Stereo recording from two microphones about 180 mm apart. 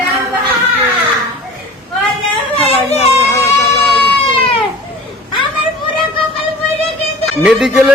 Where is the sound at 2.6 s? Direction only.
30° left (ahead or behind).